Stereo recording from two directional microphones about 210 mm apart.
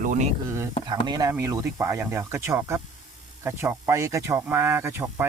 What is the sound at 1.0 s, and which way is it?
Speech, 20° right (ahead or behind).